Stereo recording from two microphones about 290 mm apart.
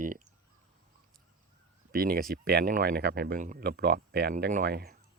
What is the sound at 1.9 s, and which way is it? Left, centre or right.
Speech, right.